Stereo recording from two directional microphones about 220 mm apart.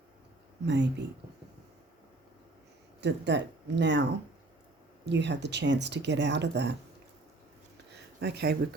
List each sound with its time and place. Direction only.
0.6 s speech: 50° right (ahead or behind)
3.0 s speech: 50° right (ahead or behind)
5.0 s speech: 50° right (ahead or behind)
8.2 s speech: 50° right (ahead or behind)